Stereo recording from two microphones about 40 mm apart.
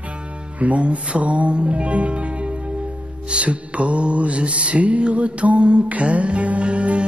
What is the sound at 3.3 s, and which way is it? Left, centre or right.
Mantra, right.